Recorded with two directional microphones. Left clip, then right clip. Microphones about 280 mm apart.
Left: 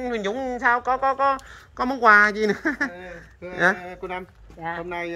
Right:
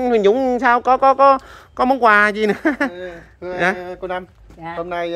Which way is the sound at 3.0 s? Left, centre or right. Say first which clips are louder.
Right 7 dB; right.